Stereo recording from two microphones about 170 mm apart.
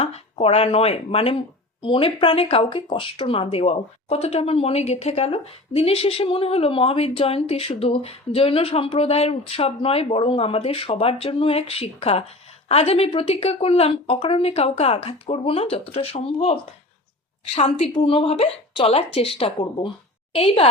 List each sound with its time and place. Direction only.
0.0 s speech: 35° left (ahead or behind)